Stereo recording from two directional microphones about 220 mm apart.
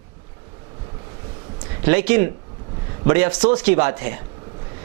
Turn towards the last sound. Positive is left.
turn(degrees=-15)  # may be behind; listen again after turning